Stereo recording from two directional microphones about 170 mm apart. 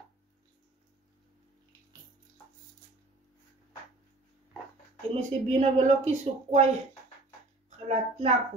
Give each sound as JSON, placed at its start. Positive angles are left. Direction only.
{"t": 5.1, "sound": "speech", "side_deg": -40}
{"t": 7.9, "sound": "speech", "side_deg": -40}